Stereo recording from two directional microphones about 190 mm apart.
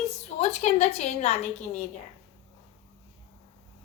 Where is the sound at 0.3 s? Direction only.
35° left (ahead or behind).